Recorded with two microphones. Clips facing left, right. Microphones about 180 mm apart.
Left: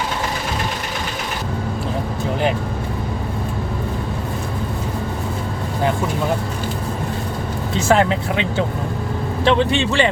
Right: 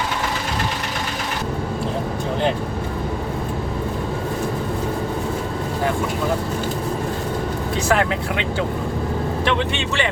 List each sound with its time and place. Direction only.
7.8 s a man's voice: 25° left (ahead or behind)